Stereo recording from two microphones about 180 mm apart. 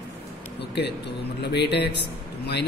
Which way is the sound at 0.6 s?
65° left (ahead or behind).